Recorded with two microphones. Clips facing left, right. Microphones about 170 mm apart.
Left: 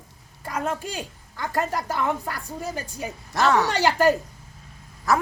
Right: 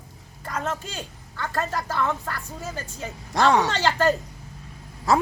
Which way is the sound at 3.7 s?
10° left (ahead or behind).